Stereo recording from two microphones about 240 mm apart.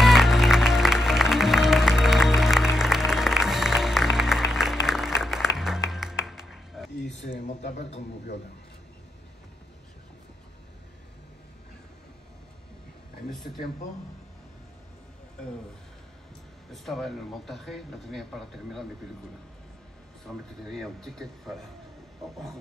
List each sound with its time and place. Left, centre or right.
0.0 s music: centre
7.1 s a sound: left
16.7 s speech: centre
20.7 s speech: centre